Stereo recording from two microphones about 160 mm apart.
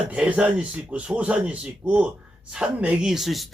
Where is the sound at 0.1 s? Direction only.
10° right (ahead or behind).